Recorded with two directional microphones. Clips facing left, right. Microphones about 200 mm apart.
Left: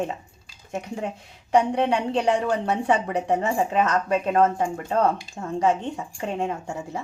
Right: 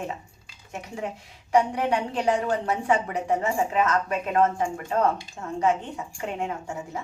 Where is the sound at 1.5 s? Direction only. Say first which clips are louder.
Left 2 dB; 30° left (ahead or behind).